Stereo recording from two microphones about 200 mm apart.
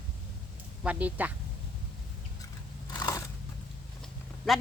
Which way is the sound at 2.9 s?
20° left (ahead or behind).